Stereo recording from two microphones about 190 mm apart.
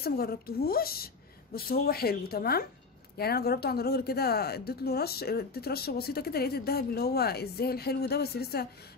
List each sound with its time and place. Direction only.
0.0 s a woman's voice: 55° left (ahead or behind)